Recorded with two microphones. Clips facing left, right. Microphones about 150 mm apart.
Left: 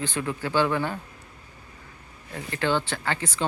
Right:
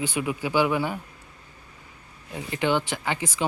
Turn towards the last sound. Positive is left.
turn(degrees=-15)  # may be behind; listen again after turning